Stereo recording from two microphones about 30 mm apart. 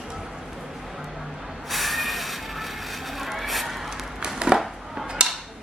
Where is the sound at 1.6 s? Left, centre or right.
Centre.